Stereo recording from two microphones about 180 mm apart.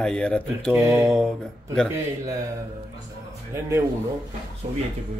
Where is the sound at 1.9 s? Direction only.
20° right (ahead or behind).